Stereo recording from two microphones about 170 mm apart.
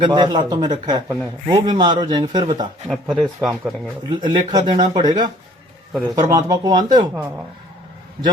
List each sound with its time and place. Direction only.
0.0 s a man's voice: 25° right (ahead or behind)
2.8 s speech: centre (ahead or behind)
4.1 s a man's voice: 30° right (ahead or behind)